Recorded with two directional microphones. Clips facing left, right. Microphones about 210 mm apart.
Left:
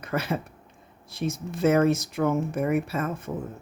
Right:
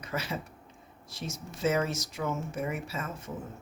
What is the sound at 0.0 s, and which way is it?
Speech, 55° left (ahead or behind).